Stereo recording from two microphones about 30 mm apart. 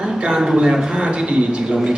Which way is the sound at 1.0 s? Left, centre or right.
Right.